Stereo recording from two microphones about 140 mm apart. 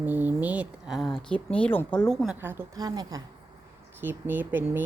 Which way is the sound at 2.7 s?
30° right (ahead or behind).